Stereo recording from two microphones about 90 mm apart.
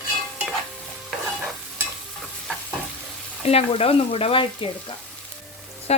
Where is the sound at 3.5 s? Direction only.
90° left.